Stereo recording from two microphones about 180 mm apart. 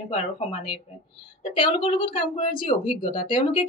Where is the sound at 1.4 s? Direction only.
30° left (ahead or behind).